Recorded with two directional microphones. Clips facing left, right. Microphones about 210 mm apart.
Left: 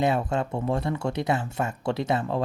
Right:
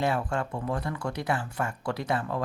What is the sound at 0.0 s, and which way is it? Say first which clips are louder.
Speech: left 4 dB; 20° left (ahead or behind).